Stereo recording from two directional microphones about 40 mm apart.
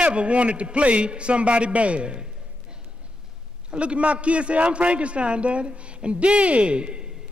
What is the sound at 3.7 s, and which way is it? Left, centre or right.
A man's voice, right.